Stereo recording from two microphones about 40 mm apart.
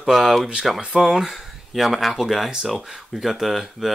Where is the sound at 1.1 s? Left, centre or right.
Centre.